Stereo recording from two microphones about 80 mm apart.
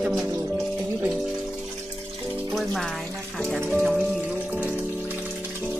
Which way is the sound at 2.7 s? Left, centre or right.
Centre.